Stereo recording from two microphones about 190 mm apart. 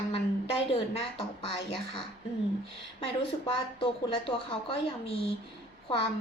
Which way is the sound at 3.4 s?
30° left (ahead or behind).